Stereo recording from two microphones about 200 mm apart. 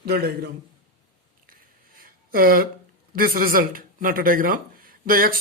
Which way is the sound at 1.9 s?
45° right (ahead or behind).